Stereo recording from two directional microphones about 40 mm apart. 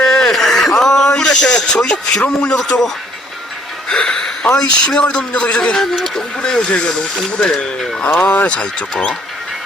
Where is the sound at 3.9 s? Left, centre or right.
Centre.